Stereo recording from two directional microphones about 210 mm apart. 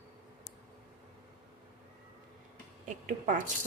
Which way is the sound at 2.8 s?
35° right (ahead or behind).